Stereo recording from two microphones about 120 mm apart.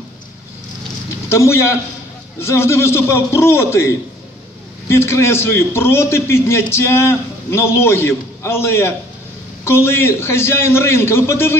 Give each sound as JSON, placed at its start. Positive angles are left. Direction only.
{"t": 1.3, "sound": "a man's voice", "side_deg": 20}